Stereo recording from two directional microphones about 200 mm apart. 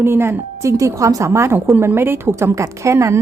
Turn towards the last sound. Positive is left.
turn(degrees=-15)  # may be behind; listen again after turning